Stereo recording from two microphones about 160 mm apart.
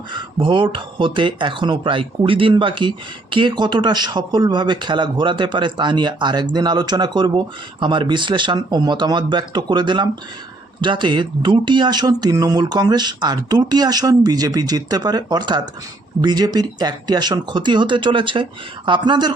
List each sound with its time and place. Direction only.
0.1 s speech: 30° right (ahead or behind)